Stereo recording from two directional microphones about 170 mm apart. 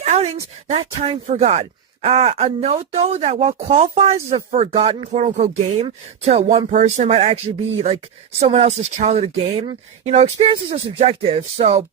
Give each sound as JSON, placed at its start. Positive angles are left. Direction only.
{"t": 0.0, "sound": "a sound", "side_deg": -40}
{"t": 0.7, "sound": "speech", "side_deg": -35}
{"t": 8.4, "sound": "speech", "side_deg": -35}